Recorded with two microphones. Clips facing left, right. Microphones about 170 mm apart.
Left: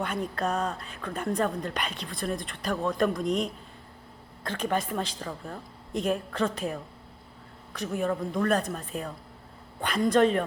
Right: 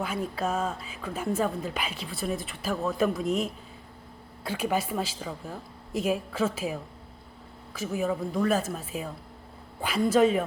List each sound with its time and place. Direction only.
0.0 s a woman's voice: 5° right (ahead or behind)